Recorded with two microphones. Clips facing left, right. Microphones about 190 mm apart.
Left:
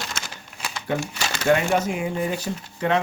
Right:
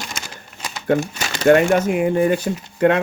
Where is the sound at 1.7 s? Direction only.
60° right (ahead or behind).